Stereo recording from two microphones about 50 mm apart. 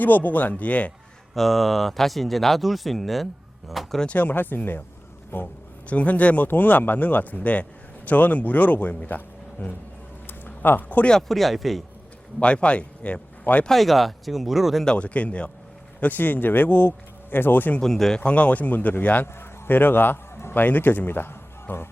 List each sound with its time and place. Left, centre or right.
0.0 s speech: left
1.4 s speech: centre
4.1 s a man's voice: left
5.9 s speech: left
10.2 s a sound: left
11.3 s speech: centre
12.4 s speech: left
13.7 s speech: centre
14.8 s speech: left
16.0 s speech: left
17.7 s speech: centre
18.2 s speech: left
19.4 s a sound: left
20.6 s speech: left